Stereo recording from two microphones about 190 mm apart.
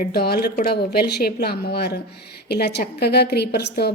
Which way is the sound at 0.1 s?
55° left (ahead or behind).